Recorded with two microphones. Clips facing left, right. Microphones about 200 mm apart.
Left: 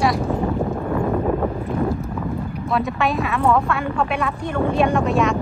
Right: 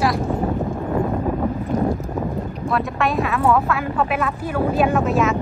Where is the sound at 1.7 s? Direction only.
40° right (ahead or behind).